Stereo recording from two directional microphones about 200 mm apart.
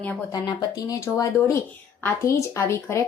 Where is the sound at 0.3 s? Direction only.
20° left (ahead or behind).